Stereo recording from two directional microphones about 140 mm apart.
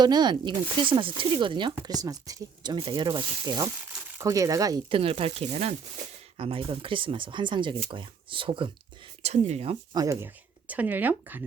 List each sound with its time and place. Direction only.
0.0 s speech: 30° right (ahead or behind)
4.9 s speech: 40° right (ahead or behind)
9.2 s speech: 55° right (ahead or behind)
9.9 s speech: 25° right (ahead or behind)